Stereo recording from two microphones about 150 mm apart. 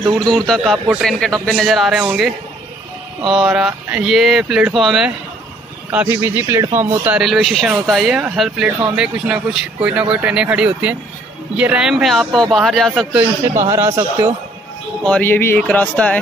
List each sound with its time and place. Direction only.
0.3 s speech: 5° left (ahead or behind)
5.9 s speech: 15° right (ahead or behind)
7.2 s speech: centre (ahead or behind)
13.7 s a man's voice: 20° right (ahead or behind)
15.0 s speech: 10° left (ahead or behind)